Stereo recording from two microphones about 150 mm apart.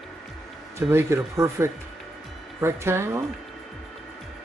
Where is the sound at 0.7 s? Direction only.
20° right (ahead or behind).